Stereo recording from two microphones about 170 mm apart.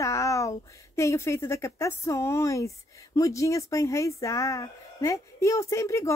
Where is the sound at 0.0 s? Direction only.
20° left (ahead or behind).